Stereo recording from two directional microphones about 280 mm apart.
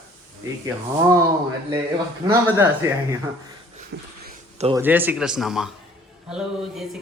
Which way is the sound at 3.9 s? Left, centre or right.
Right.